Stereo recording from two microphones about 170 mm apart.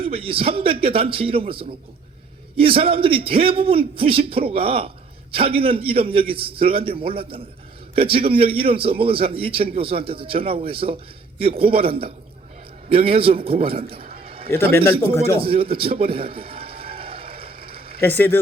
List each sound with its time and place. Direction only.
0.0 s a man's voice: 35° right (ahead or behind)
14.6 s a man's voice: 65° right (ahead or behind)
15.4 s a sound: 30° right (ahead or behind)